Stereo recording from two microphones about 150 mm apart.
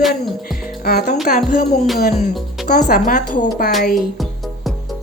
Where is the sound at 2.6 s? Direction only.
70° left (ahead or behind).